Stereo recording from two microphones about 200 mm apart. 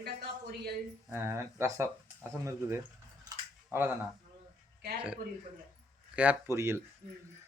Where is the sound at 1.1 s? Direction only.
10° right (ahead or behind).